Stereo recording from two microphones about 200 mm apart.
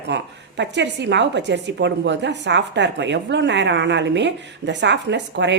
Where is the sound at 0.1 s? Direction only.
60° right (ahead or behind).